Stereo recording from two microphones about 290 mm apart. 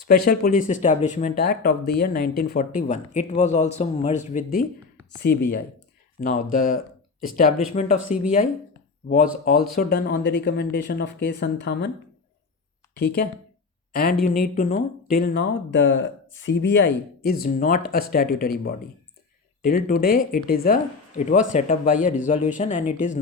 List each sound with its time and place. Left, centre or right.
0.1 s speech: left
9.0 s speech: left
13.9 s speech: left
19.6 s speech: left